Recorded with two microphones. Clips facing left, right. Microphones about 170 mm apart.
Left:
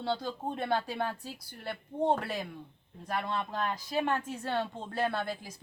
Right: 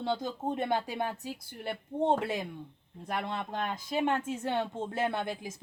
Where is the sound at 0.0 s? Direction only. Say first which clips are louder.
Right 1 dB; 20° right (ahead or behind).